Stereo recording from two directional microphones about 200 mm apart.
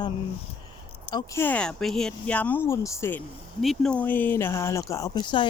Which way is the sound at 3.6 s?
Centre (ahead or behind).